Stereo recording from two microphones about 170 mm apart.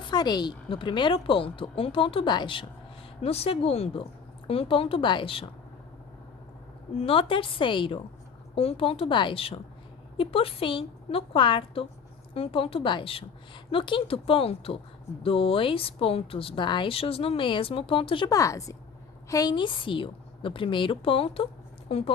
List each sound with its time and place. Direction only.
0.0 s a woman's voice: 25° left (ahead or behind)
6.9 s a woman's voice: 35° left (ahead or behind)